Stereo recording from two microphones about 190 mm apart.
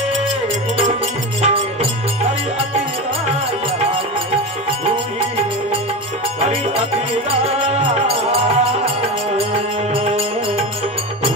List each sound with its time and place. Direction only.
1.4 s music: 30° right (ahead or behind)
7.2 s music: 35° right (ahead or behind)